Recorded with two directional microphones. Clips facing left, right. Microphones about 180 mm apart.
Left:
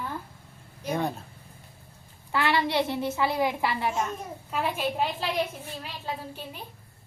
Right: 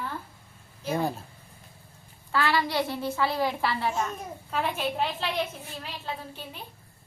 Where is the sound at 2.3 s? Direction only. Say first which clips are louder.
Left 1 dB; 20° left (ahead or behind).